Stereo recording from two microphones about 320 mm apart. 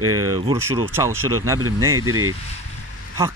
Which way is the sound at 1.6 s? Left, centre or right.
Right.